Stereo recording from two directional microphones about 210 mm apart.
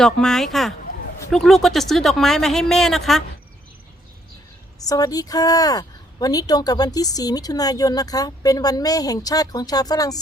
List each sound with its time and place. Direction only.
0.0 s speech: 5° left (ahead or behind)
4.9 s a woman's voice: 15° left (ahead or behind)